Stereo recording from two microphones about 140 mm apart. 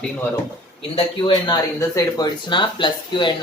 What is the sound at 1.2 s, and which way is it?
Speech, 30° left (ahead or behind).